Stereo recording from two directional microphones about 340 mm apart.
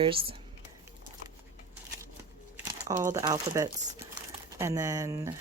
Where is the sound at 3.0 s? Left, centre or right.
Centre.